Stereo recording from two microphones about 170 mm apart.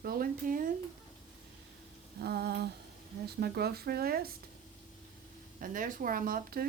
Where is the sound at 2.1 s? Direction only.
70° right (ahead or behind).